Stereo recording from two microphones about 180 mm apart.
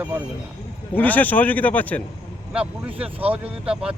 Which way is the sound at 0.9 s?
10° left (ahead or behind).